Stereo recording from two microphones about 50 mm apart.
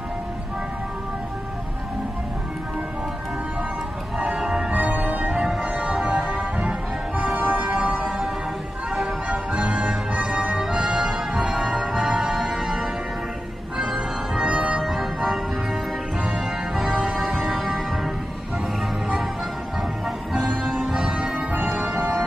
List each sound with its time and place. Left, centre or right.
4.4 s music: centre
4.6 s music: right
5.6 s music: right
7.3 s music: right
9.3 s music: right
14.8 s music: centre
16.3 s music: centre
16.9 s music: centre
20.4 s music: centre
20.9 s music: centre
21.5 s music: right